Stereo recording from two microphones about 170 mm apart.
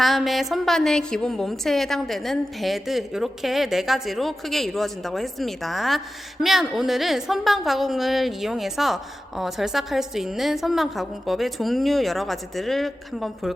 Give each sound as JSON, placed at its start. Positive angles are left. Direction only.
{"t": 0.0, "sound": "a woman's voice", "side_deg": 0}